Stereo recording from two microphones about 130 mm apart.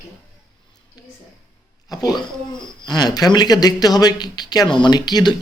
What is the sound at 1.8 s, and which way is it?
Speech, 30° left (ahead or behind).